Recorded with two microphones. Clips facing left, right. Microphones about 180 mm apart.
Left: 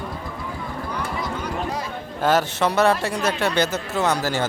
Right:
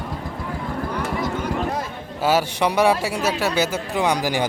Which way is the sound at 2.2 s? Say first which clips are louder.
Even; 10° right (ahead or behind).